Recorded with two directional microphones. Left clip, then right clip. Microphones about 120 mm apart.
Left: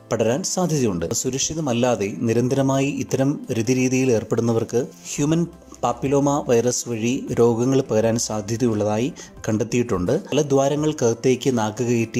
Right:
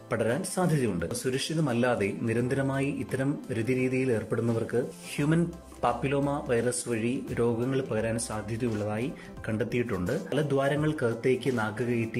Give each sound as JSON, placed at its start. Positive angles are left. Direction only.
{"t": 0.1, "sound": "speech", "side_deg": 25}
{"t": 7.4, "sound": "speech", "side_deg": 40}